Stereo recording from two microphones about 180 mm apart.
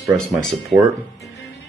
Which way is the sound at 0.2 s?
Centre (ahead or behind).